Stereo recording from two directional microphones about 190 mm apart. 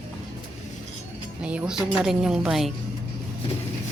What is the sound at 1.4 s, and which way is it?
A woman's voice, 5° right (ahead or behind).